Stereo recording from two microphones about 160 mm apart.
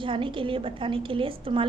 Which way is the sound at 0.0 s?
30° right (ahead or behind).